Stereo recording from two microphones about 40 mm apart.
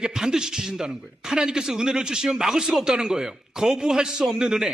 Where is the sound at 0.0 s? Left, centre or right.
Centre.